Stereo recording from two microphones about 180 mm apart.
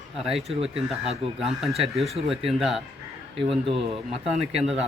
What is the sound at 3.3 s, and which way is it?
Speech, 30° right (ahead or behind).